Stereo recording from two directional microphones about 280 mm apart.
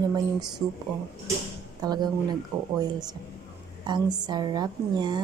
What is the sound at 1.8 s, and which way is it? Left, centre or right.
Speech, centre.